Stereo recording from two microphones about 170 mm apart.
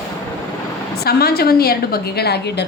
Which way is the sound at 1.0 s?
65° left (ahead or behind).